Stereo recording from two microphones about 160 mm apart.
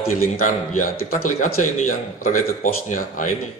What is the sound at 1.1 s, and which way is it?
Speech, 50° left (ahead or behind).